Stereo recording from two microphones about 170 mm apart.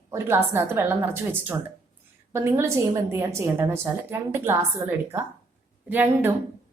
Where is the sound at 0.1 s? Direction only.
15° right (ahead or behind).